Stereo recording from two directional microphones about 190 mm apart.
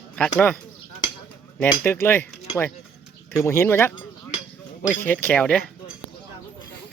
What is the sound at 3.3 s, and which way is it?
Speech, 15° left (ahead or behind).